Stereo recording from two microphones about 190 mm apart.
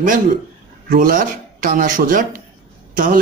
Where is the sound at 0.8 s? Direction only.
45° right (ahead or behind).